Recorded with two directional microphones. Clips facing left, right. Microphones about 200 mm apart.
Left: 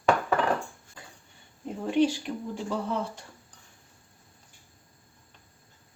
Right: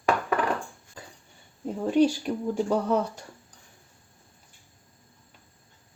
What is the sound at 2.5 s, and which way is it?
Speech, 45° right (ahead or behind).